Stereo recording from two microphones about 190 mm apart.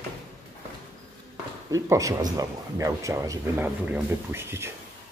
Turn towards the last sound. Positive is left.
turn(degrees=-15)  # may be behind; listen again after turning